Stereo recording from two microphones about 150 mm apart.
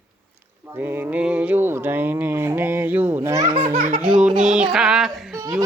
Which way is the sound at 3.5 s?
40° right (ahead or behind).